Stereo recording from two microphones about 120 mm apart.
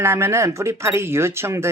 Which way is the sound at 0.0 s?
20° right (ahead or behind).